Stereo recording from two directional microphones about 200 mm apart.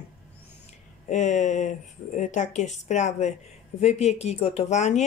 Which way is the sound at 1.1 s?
35° left (ahead or behind).